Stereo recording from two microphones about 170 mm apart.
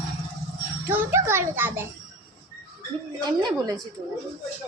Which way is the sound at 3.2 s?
25° right (ahead or behind).